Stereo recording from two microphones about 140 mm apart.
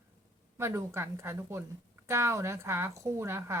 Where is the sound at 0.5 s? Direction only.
20° right (ahead or behind).